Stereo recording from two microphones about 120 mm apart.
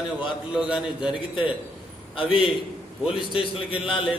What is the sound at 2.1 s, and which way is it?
Speech, 45° left (ahead or behind).